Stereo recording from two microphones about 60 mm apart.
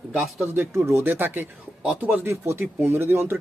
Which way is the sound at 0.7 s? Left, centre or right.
Right.